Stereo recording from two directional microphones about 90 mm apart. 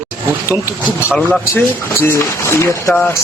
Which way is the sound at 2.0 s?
30° left (ahead or behind).